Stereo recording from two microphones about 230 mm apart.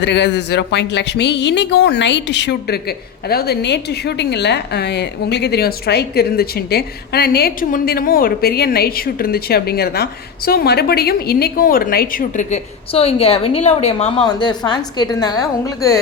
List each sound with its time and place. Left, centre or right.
0.0 s a woman's voice: left; by 16.0 s centre